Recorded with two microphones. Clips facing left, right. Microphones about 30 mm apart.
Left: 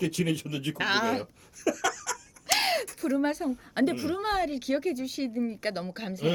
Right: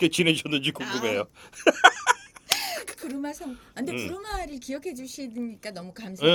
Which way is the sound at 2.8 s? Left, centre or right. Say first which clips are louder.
Left 6 dB; left.